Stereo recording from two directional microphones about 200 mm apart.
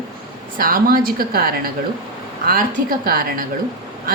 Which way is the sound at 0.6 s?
45° right (ahead or behind).